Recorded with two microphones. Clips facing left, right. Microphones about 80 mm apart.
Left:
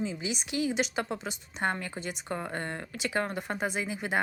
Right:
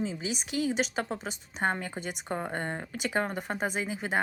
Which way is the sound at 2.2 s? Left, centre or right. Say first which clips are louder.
Right 2 dB; centre.